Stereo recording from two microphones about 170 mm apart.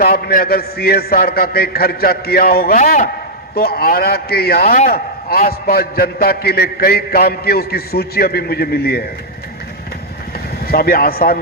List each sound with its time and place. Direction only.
0.0 s a man's voice: 65° left (ahead or behind)
10.7 s a man's voice: 65° left (ahead or behind)